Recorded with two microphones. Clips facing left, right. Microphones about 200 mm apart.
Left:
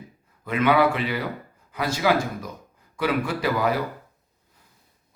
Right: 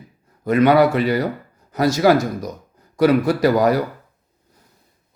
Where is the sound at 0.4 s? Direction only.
40° right (ahead or behind).